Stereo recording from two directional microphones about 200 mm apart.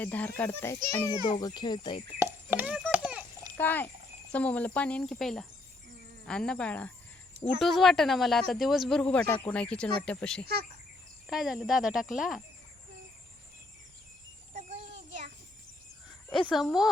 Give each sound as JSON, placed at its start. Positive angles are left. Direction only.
{"t": 0.0, "sound": "speech", "side_deg": 10}
{"t": 2.1, "sound": "speech", "side_deg": -10}
{"t": 2.9, "sound": "a sound", "side_deg": -5}
{"t": 3.6, "sound": "speech", "side_deg": 10}
{"t": 14.5, "sound": "a sound", "side_deg": -35}
{"t": 16.5, "sound": "speech", "side_deg": 0}